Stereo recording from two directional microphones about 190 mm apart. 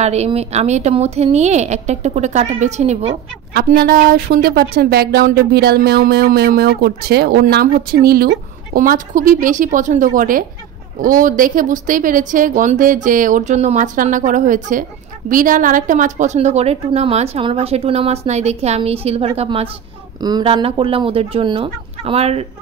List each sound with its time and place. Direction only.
0.0 s a woman's voice: 35° right (ahead or behind)
3.5 s a woman's voice: 55° right (ahead or behind); by 19.7 s 30° right (ahead or behind)
20.2 s fowl: 20° right (ahead or behind)